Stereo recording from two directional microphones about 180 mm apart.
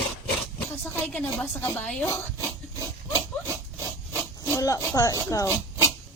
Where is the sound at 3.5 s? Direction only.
15° right (ahead or behind).